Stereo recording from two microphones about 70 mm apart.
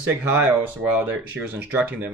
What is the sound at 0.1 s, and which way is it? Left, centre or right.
Speech, right.